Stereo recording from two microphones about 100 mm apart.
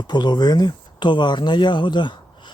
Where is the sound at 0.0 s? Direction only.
45° left (ahead or behind).